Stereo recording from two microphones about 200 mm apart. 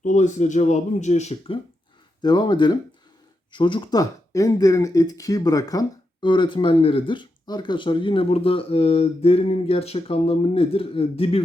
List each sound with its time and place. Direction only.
0.0 s speech: 35° left (ahead or behind)
2.2 s speech: 20° left (ahead or behind)